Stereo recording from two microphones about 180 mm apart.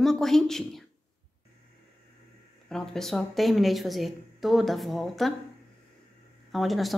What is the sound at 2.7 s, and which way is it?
A woman's voice, centre (ahead or behind).